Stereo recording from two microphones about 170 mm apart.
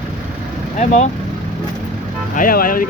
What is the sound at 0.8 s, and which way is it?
Speech, 45° left (ahead or behind).